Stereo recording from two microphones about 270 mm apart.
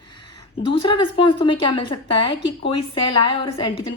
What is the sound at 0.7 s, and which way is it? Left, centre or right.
A woman's voice, centre.